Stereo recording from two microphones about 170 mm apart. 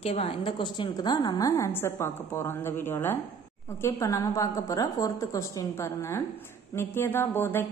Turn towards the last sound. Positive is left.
turn(degrees=15)  # may be behind; listen again after turning